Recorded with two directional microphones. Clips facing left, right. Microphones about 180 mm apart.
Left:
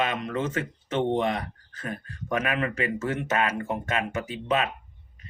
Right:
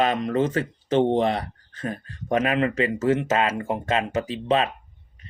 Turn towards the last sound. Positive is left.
turn(degrees=-30)  # may be behind; listen again after turning